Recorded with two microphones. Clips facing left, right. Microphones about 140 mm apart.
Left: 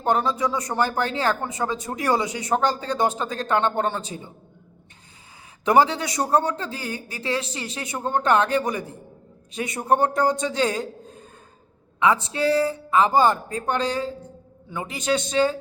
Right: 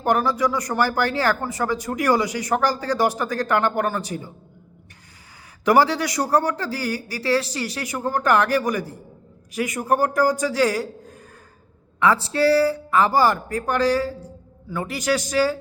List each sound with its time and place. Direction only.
0.0 s speech: 25° left (ahead or behind)
5.6 s speech: 25° left (ahead or behind)